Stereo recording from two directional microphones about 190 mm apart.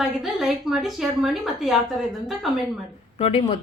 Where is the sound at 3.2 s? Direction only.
35° left (ahead or behind).